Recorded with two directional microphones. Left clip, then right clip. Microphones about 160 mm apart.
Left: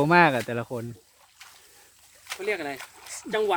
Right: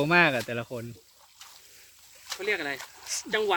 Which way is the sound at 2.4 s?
90° left.